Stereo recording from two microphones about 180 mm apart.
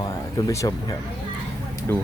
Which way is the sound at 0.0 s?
20° left (ahead or behind).